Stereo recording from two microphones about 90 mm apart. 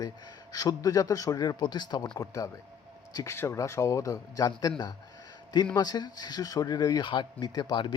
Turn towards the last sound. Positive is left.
turn(degrees=55)  # may be behind; listen again after turning